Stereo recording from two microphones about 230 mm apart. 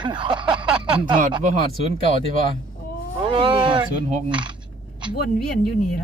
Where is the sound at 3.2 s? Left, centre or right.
Right.